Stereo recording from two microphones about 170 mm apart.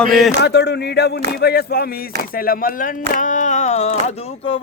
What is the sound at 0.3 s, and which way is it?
Speech, 85° left.